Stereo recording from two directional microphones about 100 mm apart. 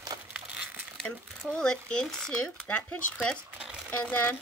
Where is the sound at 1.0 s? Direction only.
10° left (ahead or behind).